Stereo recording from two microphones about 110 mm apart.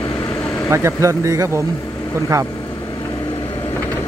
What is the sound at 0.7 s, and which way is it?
Speech, 25° right (ahead or behind).